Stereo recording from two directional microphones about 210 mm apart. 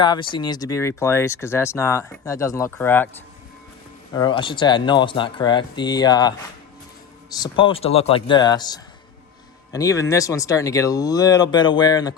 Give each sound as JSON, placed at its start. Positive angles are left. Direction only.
{"t": 0.0, "sound": "speech", "side_deg": 20}
{"t": 4.1, "sound": "speech", "side_deg": 20}